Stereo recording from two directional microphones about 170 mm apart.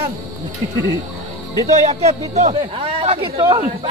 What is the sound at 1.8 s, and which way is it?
Speech, 40° right (ahead or behind).